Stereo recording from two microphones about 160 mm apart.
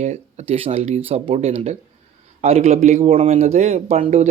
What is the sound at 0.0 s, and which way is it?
Speech, 45° right (ahead or behind).